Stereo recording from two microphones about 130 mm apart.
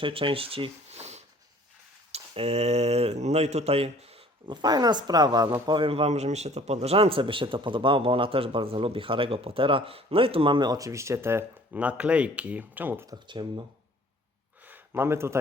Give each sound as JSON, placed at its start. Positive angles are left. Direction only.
{"t": 0.0, "sound": "speech", "side_deg": -45}
{"t": 4.4, "sound": "a man's voice", "side_deg": -35}
{"t": 13.1, "sound": "a man's voice", "side_deg": -35}
{"t": 14.6, "sound": "a sound", "side_deg": -15}